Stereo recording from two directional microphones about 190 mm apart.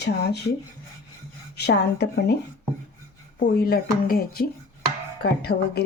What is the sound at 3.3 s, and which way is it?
A woman's voice, 55° left (ahead or behind).